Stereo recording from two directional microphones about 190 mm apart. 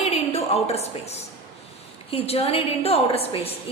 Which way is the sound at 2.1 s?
30° left (ahead or behind).